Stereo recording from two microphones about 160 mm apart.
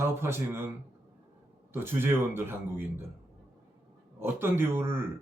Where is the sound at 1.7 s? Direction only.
15° right (ahead or behind).